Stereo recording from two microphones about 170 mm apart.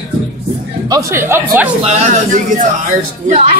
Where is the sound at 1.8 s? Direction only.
45° right (ahead or behind).